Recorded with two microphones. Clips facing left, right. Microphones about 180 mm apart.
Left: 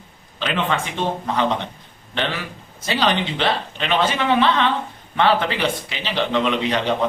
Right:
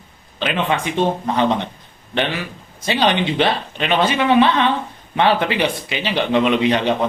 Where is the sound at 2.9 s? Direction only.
20° right (ahead or behind).